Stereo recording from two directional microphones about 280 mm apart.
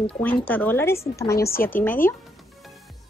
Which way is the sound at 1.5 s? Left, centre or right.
Left.